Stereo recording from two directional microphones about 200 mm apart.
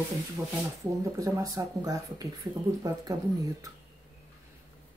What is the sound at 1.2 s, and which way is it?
Speech, 15° right (ahead or behind).